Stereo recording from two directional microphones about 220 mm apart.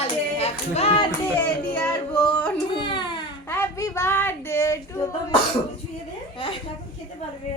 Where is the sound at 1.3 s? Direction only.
5° left (ahead or behind).